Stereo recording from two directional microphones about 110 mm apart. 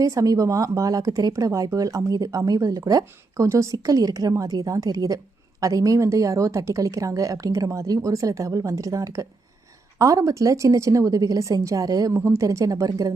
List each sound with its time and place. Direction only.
0.0 s a woman's voice: 30° right (ahead or behind)